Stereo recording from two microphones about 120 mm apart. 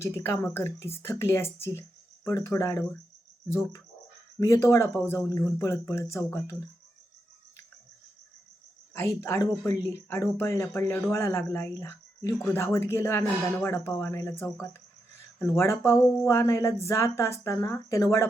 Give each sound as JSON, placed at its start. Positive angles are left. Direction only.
{"t": 0.0, "sound": "speech", "side_deg": 20}
{"t": 8.9, "sound": "speech", "side_deg": 20}